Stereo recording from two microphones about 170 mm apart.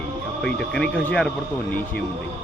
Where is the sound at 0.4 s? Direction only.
5° left (ahead or behind).